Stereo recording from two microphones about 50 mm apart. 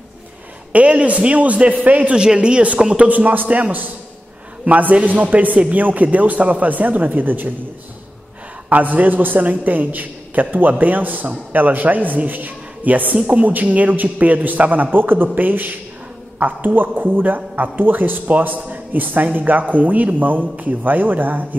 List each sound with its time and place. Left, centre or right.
0.7 s a man's voice: right
2.1 s a man's voice: centre
3.1 s a man's voice: right
8.6 s a man's voice: right